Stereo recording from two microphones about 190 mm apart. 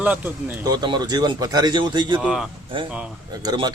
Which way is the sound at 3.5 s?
20° right (ahead or behind).